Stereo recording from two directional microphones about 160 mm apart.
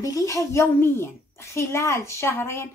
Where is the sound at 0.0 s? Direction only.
20° left (ahead or behind).